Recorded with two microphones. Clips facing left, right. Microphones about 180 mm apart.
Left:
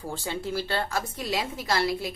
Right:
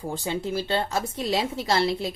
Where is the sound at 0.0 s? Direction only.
15° right (ahead or behind).